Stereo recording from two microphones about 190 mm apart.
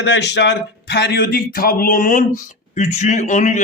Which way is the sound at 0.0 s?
65° left (ahead or behind).